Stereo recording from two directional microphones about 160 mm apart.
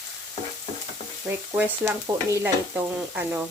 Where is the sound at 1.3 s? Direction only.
10° right (ahead or behind).